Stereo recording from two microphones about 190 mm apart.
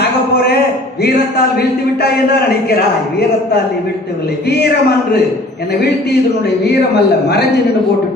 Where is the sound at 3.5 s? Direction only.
55° left (ahead or behind).